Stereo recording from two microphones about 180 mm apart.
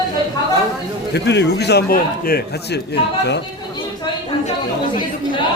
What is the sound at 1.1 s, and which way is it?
A man's voice, 70° left (ahead or behind).